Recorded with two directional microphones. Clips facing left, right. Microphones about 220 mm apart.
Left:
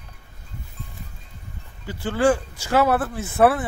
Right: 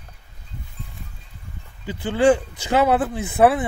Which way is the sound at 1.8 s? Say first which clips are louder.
Right 3 dB; 15° right (ahead or behind).